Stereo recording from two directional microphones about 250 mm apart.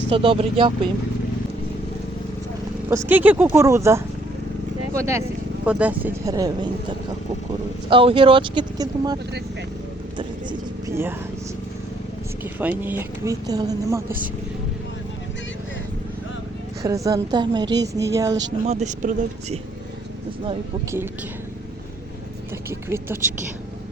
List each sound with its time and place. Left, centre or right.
0.1 s speech: right
3.1 s speech: centre
7.9 s speech: right
10.2 s vehicle: centre
12.4 s speech: centre
16.8 s speech: centre
18.6 s speech: right
22.7 s speech: centre